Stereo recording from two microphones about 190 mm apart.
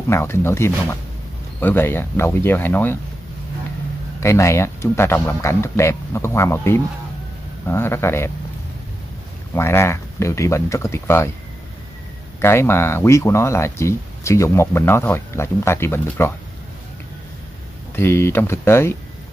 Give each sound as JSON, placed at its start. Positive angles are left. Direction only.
{"t": 0.1, "sound": "speech", "side_deg": 15}
{"t": 4.2, "sound": "speech", "side_deg": 15}
{"t": 9.5, "sound": "speech", "side_deg": 15}
{"t": 12.4, "sound": "speech", "side_deg": 15}
{"t": 17.9, "sound": "speech", "side_deg": 15}